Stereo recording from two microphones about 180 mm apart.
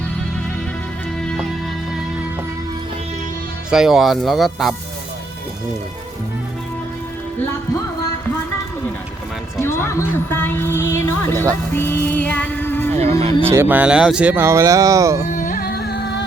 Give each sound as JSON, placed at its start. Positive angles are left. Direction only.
{"t": 3.7, "sound": "speech", "side_deg": 0}
{"t": 9.6, "sound": "music", "side_deg": 15}
{"t": 10.2, "sound": "speech", "side_deg": 10}
{"t": 11.7, "sound": "music", "side_deg": 10}
{"t": 12.9, "sound": "speech", "side_deg": -35}
{"t": 13.4, "sound": "speech", "side_deg": -10}
{"t": 15.3, "sound": "carnatic music", "side_deg": 50}